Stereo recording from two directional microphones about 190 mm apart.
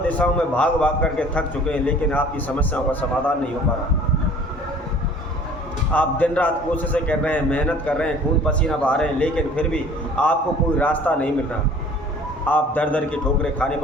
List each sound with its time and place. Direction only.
0.1 s a man's voice: 5° left (ahead or behind)
5.9 s a man's voice: 10° left (ahead or behind)
12.5 s a man's voice: 10° left (ahead or behind)